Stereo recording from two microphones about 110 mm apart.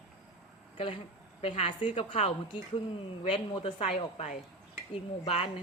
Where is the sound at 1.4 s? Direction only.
65° left (ahead or behind).